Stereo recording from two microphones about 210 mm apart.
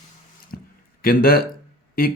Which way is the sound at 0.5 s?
45° left (ahead or behind).